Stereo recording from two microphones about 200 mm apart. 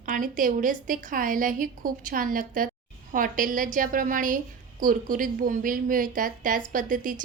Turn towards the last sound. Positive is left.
turn(degrees=-40)  # may be behind; listen again after turning